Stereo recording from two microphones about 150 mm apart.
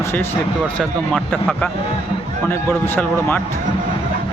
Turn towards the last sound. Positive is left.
turn(degrees=15)  # may be behind; listen again after turning